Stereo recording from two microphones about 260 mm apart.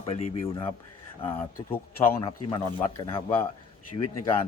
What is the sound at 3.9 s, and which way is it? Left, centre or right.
Speech, left.